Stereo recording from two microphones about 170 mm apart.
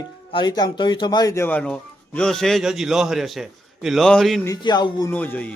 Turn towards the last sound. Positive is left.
turn(degrees=10)  # may be behind; listen again after turning